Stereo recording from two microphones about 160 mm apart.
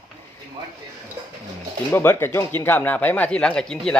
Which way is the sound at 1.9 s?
15° left (ahead or behind).